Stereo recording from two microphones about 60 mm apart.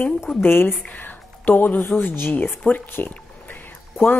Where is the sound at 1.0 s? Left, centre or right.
Left.